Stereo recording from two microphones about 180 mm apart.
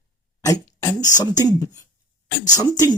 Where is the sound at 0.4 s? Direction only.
20° left (ahead or behind).